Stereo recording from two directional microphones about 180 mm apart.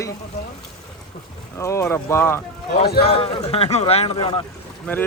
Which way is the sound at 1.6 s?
15° left (ahead or behind).